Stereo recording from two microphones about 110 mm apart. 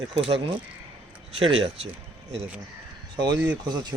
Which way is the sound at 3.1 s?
40° right (ahead or behind).